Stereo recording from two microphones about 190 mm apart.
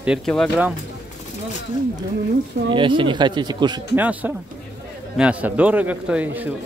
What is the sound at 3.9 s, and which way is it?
A man's voice, 10° right (ahead or behind).